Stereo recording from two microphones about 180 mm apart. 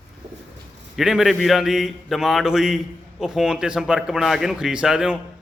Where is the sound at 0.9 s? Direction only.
Centre (ahead or behind).